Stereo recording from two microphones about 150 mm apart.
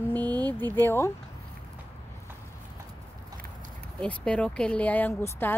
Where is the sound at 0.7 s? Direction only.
15° left (ahead or behind).